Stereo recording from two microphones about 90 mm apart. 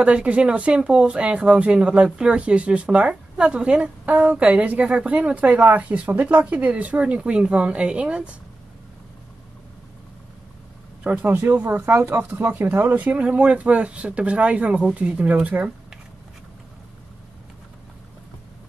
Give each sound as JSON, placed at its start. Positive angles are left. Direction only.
{"t": 0.0, "sound": "speech", "side_deg": -15}
{"t": 11.1, "sound": "speech", "side_deg": -20}